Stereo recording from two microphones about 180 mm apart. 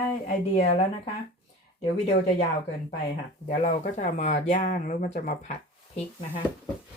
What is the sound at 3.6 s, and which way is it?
Speech, 40° left (ahead or behind).